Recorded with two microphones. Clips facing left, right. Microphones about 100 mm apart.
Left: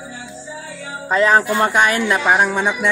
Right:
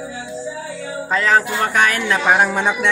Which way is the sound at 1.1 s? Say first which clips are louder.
Left 3 dB; 20° left (ahead or behind).